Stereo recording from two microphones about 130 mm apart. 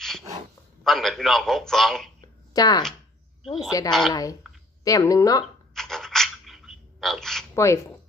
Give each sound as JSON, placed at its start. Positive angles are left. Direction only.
{"t": 0.9, "sound": "a man's voice", "side_deg": 0}
{"t": 2.5, "sound": "a woman's voice", "side_deg": 30}
{"t": 5.7, "sound": "a sound", "side_deg": 5}
{"t": 7.5, "sound": "speech", "side_deg": 20}